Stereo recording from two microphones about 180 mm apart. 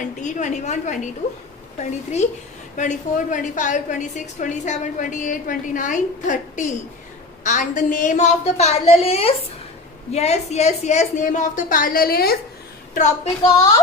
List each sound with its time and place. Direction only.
0.0 s a woman's voice: 45° left (ahead or behind)
12.9 s speech: 40° left (ahead or behind)